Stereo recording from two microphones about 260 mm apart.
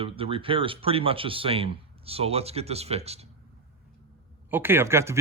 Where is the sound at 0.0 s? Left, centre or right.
Right.